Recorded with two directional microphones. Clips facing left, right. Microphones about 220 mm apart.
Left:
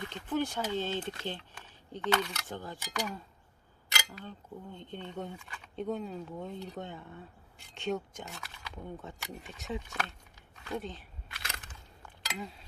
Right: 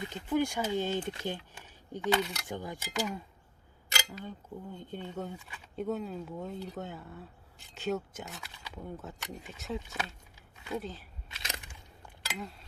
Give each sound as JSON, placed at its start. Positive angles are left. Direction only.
{"t": 0.0, "sound": "speech", "side_deg": -10}
{"t": 4.2, "sound": "speech", "side_deg": -10}
{"t": 11.3, "sound": "a sound", "side_deg": -20}